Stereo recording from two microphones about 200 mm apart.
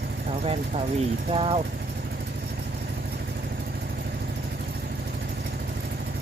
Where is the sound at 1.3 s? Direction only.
25° right (ahead or behind).